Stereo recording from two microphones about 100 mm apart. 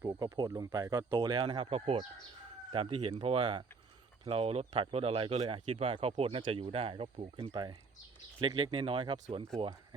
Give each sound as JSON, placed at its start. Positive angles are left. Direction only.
{"t": 0.2, "sound": "speech", "side_deg": -40}
{"t": 1.3, "sound": "speech", "side_deg": -55}
{"t": 2.7, "sound": "speech", "side_deg": -60}
{"t": 4.2, "sound": "speech", "side_deg": -75}
{"t": 4.7, "sound": "speech", "side_deg": -65}
{"t": 6.4, "sound": "speech", "side_deg": -60}
{"t": 7.5, "sound": "speech", "side_deg": -50}
{"t": 8.4, "sound": "speech", "side_deg": -60}